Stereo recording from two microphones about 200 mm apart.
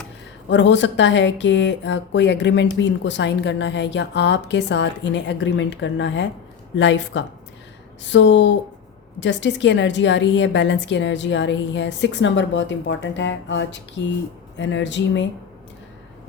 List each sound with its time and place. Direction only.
0.4 s speech: 65° left (ahead or behind)